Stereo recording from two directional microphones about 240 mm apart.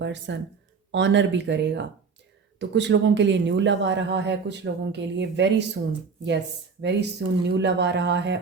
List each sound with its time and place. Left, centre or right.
0.0 s speech: right
6.8 s speech: right